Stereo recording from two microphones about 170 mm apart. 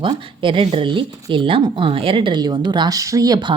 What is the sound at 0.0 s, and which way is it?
Speech, 30° right (ahead or behind).